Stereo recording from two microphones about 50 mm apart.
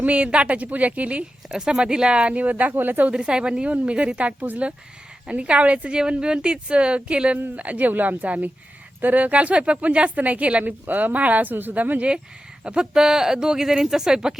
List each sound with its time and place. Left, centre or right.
0.0 s a woman's voice: right
1.5 s a woman's voice: centre; by 3.1 s right
3.1 s a woman's voice: centre
12.6 s speech: centre